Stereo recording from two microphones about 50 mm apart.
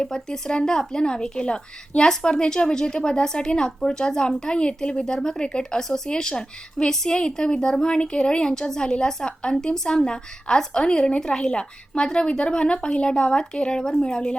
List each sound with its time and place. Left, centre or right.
0.0 s speech: centre